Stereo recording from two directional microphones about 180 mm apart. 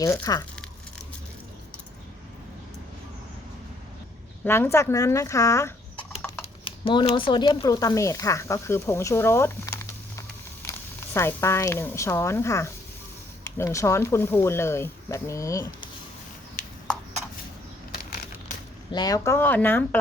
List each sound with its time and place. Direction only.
0.0 s speech: 20° left (ahead or behind)
4.4 s speech: 15° left (ahead or behind)
6.4 s speech: 30° left (ahead or behind)
16.6 s a sound: 45° left (ahead or behind)
18.9 s speech: 25° left (ahead or behind)